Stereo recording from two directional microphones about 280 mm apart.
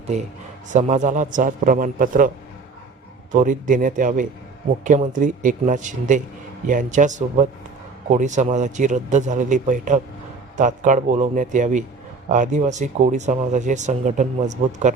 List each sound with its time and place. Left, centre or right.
0.1 s speech: right
3.3 s speech: right